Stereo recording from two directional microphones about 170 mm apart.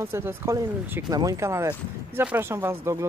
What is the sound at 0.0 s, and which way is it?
Speech, 15° right (ahead or behind).